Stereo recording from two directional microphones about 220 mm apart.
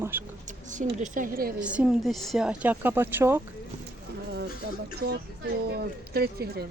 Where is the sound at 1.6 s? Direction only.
5° right (ahead or behind).